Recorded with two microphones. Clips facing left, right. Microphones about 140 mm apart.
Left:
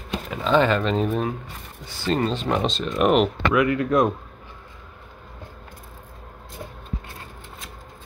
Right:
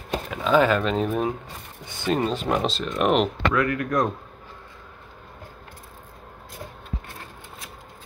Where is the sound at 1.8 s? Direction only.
20° right (ahead or behind).